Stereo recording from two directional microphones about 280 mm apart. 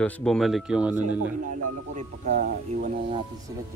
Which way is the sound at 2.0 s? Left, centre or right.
Right.